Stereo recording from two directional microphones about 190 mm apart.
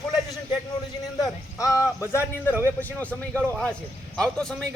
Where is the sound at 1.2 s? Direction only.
15° left (ahead or behind).